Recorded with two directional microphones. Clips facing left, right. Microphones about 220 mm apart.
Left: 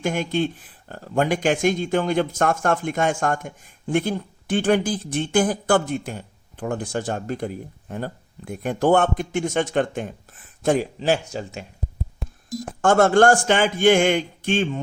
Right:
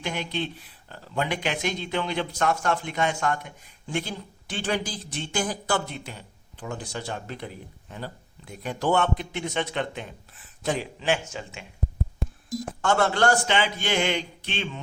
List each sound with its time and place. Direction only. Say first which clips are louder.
0.0 s speech: left 8 dB; 50° left (ahead or behind)
12.8 s speech: left 7 dB; 50° left (ahead or behind)